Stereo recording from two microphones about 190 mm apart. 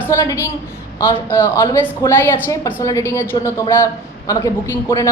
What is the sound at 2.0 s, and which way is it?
Speech, 15° left (ahead or behind).